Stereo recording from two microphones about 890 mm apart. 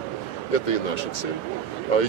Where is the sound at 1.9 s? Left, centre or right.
Left.